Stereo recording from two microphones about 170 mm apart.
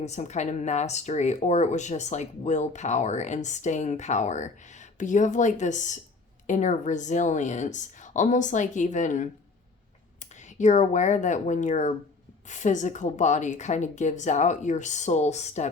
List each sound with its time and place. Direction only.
0.0 s speech: 45° left (ahead or behind)